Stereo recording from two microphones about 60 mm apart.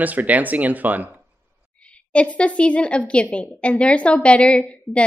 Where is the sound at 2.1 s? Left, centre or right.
Left.